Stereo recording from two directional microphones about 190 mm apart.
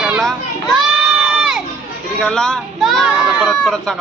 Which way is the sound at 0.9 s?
5° right (ahead or behind).